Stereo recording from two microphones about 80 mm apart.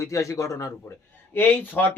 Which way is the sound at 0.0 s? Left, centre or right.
Left.